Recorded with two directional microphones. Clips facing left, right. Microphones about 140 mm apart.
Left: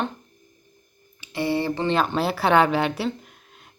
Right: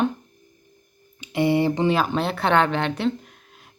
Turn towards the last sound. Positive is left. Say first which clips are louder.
# right 4 dB
turn(degrees=0)  # may be behind; listen again after turning